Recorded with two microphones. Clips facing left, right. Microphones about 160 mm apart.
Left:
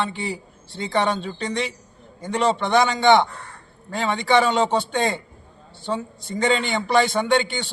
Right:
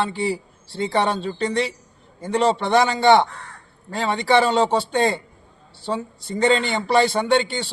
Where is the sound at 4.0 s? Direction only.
30° right (ahead or behind).